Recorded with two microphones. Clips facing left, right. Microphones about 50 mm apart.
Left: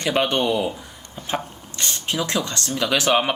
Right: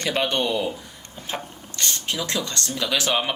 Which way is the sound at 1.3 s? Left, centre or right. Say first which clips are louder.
Left 5 dB; centre.